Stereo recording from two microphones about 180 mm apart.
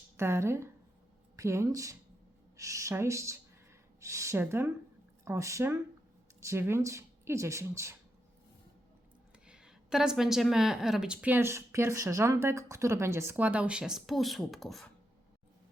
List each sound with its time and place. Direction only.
0.2 s speech: 15° right (ahead or behind)
9.5 s a woman's voice: 5° right (ahead or behind)